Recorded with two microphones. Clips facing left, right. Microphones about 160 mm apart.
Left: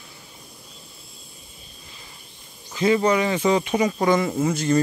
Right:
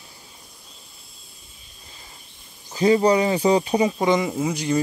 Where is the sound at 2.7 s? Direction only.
35° right (ahead or behind).